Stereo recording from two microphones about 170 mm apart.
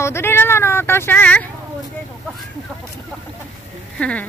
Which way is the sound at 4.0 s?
5° left (ahead or behind).